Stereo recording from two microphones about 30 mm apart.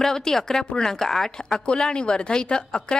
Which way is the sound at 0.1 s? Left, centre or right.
Centre.